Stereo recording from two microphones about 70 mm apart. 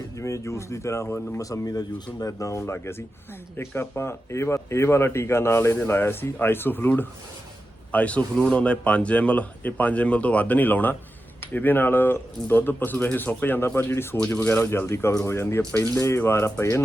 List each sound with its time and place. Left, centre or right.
0.2 s speech: left
1.4 s speech: left